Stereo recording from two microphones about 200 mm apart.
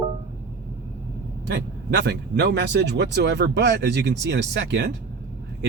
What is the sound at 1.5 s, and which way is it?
Speech, 60° right (ahead or behind).